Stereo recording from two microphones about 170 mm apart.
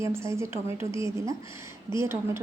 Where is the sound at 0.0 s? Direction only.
15° right (ahead or behind).